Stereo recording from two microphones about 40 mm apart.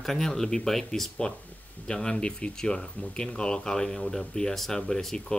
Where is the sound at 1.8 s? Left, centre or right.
Centre.